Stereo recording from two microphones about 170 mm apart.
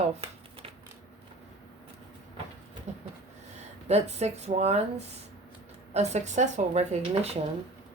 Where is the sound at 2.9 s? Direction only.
40° right (ahead or behind).